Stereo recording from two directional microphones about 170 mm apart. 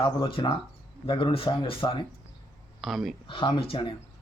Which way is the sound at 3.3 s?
30° left (ahead or behind).